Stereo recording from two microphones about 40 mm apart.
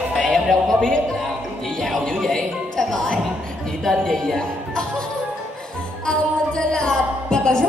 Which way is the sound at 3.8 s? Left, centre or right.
Centre.